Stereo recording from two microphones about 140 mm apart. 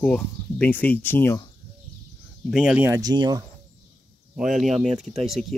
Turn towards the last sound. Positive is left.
turn(degrees=0)  # may be behind; listen again after turning